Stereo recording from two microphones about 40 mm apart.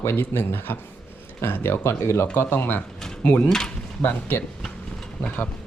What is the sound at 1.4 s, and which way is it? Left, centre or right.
Speech, left.